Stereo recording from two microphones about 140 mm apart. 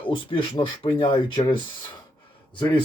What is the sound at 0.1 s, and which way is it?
Speech, 35° left (ahead or behind).